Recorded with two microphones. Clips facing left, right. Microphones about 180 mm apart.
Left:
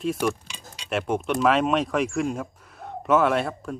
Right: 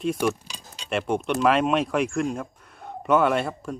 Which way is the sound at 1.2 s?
Centre (ahead or behind).